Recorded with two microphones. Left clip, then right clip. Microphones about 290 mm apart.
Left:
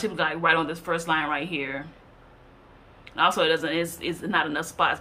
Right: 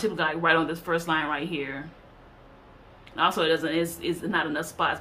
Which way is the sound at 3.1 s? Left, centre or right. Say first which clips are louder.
Left 2 dB; centre.